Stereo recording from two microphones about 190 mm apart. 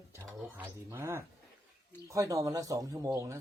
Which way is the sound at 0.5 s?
15° right (ahead or behind).